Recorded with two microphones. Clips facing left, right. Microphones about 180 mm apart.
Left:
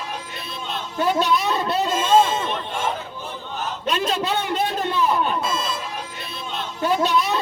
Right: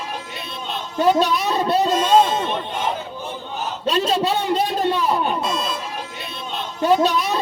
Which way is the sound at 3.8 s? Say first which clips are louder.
Right 4 dB; 30° right (ahead or behind).